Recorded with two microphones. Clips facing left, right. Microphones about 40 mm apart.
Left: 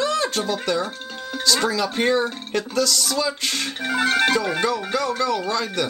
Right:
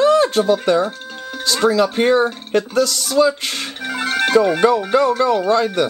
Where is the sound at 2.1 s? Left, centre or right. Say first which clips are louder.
Right 6 dB; right.